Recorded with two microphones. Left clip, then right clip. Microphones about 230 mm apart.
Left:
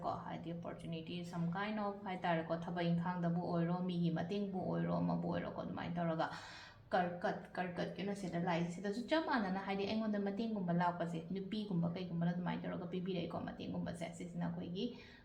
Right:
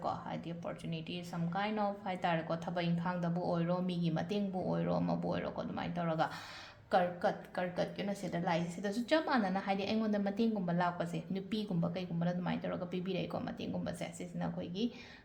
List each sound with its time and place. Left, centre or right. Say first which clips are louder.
1.5 s a woman's voice: right 6 dB; right